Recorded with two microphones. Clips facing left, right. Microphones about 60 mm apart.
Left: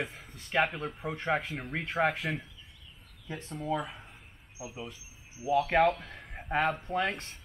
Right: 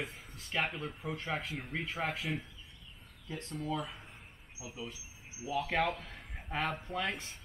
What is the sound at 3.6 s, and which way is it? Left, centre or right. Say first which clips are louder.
Speech: left 5 dB; left.